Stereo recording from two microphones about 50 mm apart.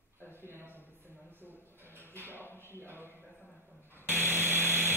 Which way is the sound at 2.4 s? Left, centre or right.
Left.